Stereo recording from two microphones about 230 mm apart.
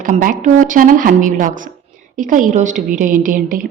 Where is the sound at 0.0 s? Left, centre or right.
Right.